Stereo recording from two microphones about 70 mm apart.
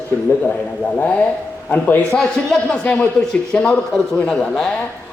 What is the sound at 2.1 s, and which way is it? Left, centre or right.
A man's voice, centre.